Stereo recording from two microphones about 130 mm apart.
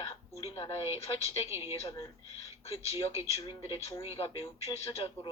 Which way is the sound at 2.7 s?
50° left (ahead or behind).